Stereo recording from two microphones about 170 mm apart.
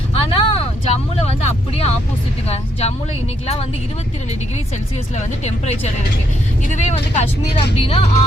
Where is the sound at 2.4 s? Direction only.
35° left (ahead or behind).